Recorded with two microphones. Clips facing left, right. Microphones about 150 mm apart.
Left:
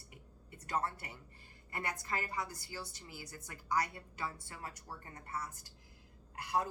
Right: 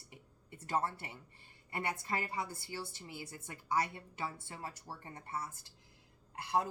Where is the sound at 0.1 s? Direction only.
25° right (ahead or behind).